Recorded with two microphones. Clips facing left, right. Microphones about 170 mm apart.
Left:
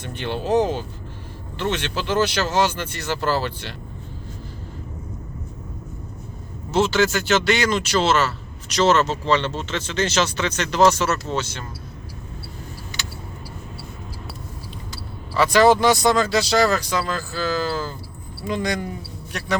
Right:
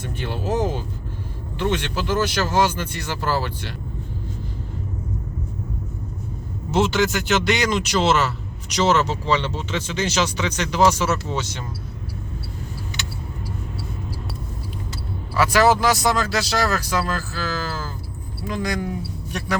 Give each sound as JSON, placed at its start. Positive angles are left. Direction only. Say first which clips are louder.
{"t": 0.0, "sound": "speech", "louder": "left 1 dB", "side_deg": -10}
{"t": 6.7, "sound": "speech", "louder": "left 1 dB", "side_deg": -15}
{"t": 15.4, "sound": "speech", "louder": "left 2 dB", "side_deg": -5}